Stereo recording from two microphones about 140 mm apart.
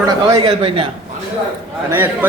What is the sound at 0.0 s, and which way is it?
Speech, 25° right (ahead or behind).